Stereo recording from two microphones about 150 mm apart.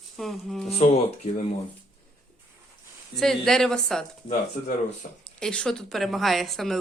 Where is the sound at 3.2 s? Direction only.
5° left (ahead or behind).